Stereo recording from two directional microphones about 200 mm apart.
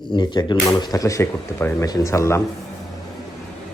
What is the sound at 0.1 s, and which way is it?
Speech, 20° left (ahead or behind).